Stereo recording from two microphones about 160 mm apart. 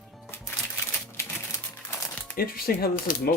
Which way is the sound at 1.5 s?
25° left (ahead or behind).